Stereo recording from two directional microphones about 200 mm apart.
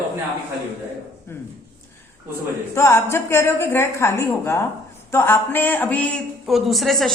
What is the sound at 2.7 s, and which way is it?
A woman's voice, 15° left (ahead or behind).